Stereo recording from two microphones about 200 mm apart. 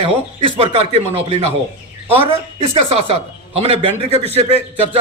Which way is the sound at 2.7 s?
30° right (ahead or behind).